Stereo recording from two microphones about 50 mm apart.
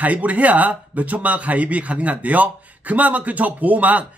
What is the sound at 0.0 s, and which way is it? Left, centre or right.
Speech, right.